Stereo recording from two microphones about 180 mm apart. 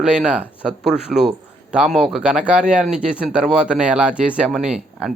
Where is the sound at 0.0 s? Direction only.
5° right (ahead or behind).